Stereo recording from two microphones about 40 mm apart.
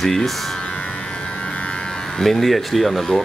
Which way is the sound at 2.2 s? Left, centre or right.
Centre.